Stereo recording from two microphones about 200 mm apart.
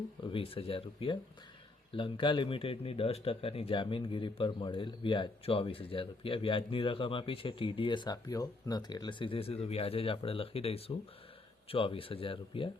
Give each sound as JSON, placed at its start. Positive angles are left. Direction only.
{"t": 0.3, "sound": "a man's voice", "side_deg": 30}